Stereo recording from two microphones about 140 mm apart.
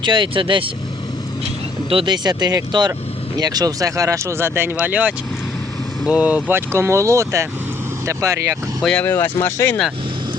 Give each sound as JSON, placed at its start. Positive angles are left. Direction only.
{"t": 0.0, "sound": "speech", "side_deg": -35}
{"t": 1.9, "sound": "speech", "side_deg": -35}
{"t": 8.8, "sound": "speech", "side_deg": 5}